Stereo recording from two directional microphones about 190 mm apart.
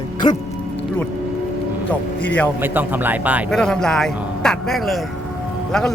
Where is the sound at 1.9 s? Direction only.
5° left (ahead or behind).